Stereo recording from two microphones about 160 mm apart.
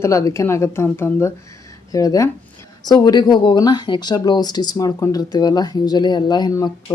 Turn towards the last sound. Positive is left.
turn(degrees=25)  # may be behind; listen again after turning